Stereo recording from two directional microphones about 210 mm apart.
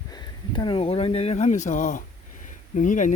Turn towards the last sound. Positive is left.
turn(degrees=35)  # may be behind; listen again after turning